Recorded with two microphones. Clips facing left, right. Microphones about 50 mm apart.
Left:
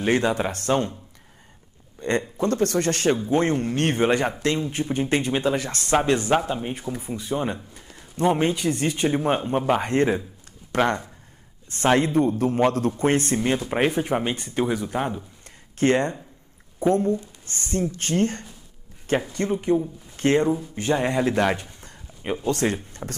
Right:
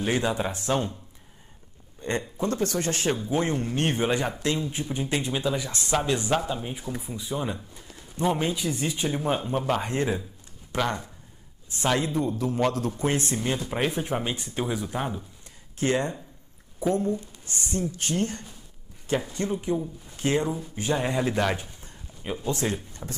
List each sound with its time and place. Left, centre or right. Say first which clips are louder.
0.0 s speech: left 4 dB; left
2.0 s a man's voice: left 5 dB; left
5.6 s speech: left 5 dB; left
9.1 s speech: left 4 dB; left
11.7 s speech: left 6 dB; left
15.4 s a sound: left 6 dB; left
16.8 s speech: left 5 dB; left
22.2 s speech: left 5 dB; left
22.5 s speech: left 4 dB; left
23.0 s speech: left 4 dB; left